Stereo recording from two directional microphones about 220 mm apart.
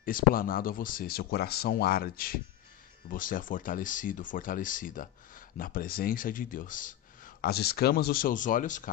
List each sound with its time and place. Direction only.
0.0 s speech: 40° left (ahead or behind)